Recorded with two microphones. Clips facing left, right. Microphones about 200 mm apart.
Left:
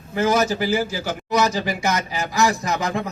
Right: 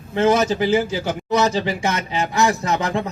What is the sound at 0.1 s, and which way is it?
Speech, 25° right (ahead or behind).